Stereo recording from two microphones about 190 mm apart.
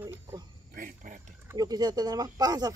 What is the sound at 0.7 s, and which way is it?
Speech, 45° right (ahead or behind).